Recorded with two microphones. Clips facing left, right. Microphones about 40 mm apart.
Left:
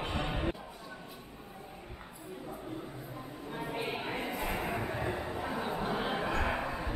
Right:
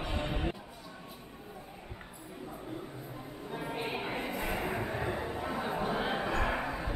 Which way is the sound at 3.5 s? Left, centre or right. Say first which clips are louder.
Even; centre.